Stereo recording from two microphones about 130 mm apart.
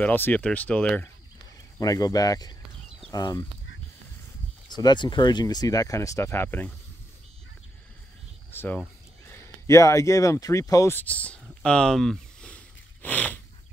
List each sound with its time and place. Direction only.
0.0 s speech: 15° left (ahead or behind)
1.8 s speech: 30° left (ahead or behind)
4.6 s speech: 35° left (ahead or behind); by 6.7 s 15° left (ahead or behind)
8.5 s speech: 15° left (ahead or behind)
11.6 s sniff: 5° left (ahead or behind)